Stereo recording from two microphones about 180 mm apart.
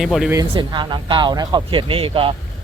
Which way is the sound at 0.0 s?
Centre (ahead or behind).